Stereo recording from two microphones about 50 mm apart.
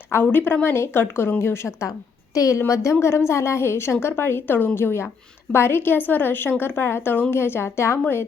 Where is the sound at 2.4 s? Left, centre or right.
Left.